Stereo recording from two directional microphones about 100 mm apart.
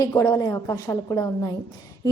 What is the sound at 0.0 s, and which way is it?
A woman's voice, 30° left (ahead or behind).